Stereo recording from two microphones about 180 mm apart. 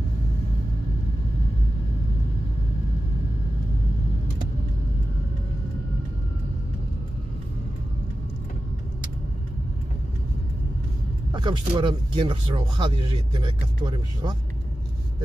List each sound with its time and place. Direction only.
11.3 s speech: 25° right (ahead or behind)